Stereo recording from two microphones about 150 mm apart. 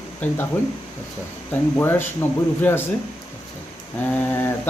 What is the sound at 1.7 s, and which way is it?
Speech, 15° left (ahead or behind).